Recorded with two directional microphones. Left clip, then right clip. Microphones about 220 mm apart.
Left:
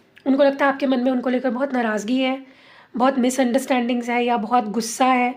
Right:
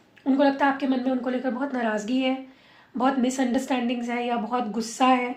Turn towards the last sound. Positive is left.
turn(degrees=50)  # may be behind; listen again after turning